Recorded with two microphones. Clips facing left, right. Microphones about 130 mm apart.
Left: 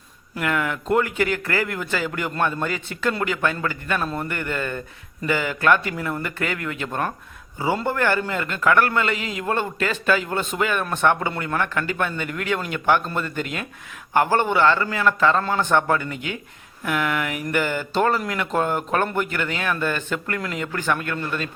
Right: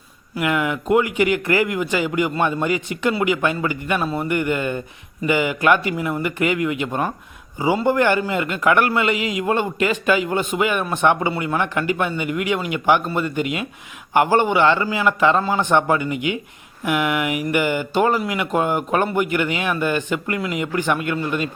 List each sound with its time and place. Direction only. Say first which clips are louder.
0.3 s a man's voice: right 3 dB; 10° right (ahead or behind)